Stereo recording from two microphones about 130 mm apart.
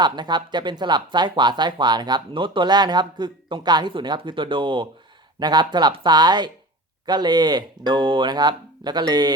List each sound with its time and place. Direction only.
0.0 s speech: 35° right (ahead or behind)